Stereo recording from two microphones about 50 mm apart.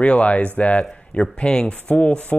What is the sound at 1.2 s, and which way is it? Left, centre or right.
Speech, centre.